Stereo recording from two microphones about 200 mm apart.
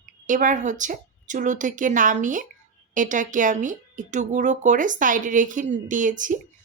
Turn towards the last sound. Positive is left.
turn(degrees=-40)  # may be behind; listen again after turning